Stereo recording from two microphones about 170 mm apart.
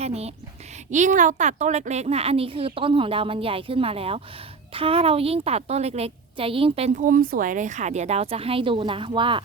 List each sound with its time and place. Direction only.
0.0 s a woman's voice: 40° right (ahead or behind)